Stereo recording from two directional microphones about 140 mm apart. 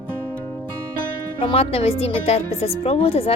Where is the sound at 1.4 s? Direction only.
45° left (ahead or behind).